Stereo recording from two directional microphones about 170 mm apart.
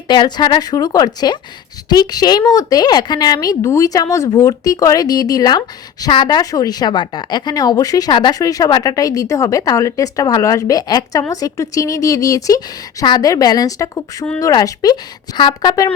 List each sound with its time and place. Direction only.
0.1 s a woman's voice: 25° left (ahead or behind)